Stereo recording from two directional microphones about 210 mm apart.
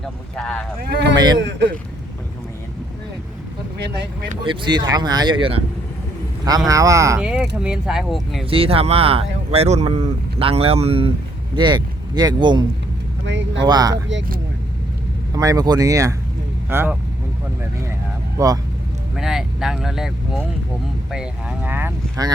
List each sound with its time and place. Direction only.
0.3 s speech: 5° left (ahead or behind)
0.9 s speech: 55° right (ahead or behind)
1.1 s speech: 20° right (ahead or behind)
1.4 s speech: 55° right (ahead or behind)
3.8 s speech: 55° right (ahead or behind)
4.4 s speech: 20° right (ahead or behind)
6.7 s speech: 15° right (ahead or behind)
7.2 s speech: 5° right (ahead or behind)
8.4 s speech: 25° right (ahead or behind)
13.2 s speech: 60° right (ahead or behind)
13.7 s speech: 20° right (ahead or behind)
15.3 s speech: 15° right (ahead or behind)
18.3 s speech: 15° right (ahead or behind)
19.1 s speech: centre (ahead or behind)